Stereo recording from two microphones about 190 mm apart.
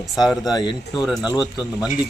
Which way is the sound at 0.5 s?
25° left (ahead or behind).